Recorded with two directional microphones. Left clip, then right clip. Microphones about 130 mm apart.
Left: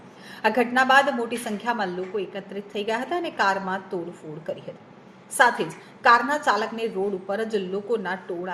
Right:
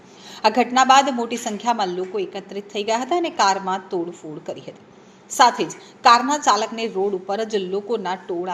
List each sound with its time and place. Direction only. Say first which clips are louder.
0.4 s a woman's voice: right 5 dB; 40° right (ahead or behind)
5.4 s a woman's voice: right 4 dB; 45° right (ahead or behind)